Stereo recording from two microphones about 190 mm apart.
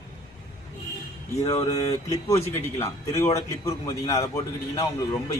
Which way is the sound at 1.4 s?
20° left (ahead or behind).